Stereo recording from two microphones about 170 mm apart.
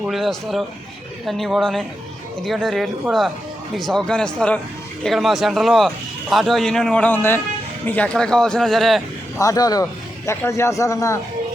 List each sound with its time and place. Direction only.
0.0 s a man's voice: centre (ahead or behind)
9.4 s speech: 20° left (ahead or behind)